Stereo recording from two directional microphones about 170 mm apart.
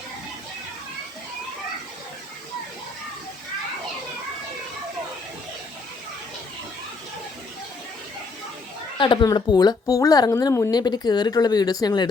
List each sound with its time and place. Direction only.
9.0 s speech: 25° left (ahead or behind)